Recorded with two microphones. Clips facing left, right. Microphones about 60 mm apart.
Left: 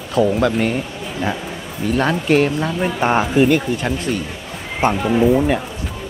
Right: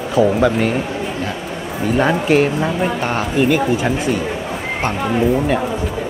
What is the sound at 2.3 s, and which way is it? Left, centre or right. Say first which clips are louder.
Speech: right 1 dB; centre.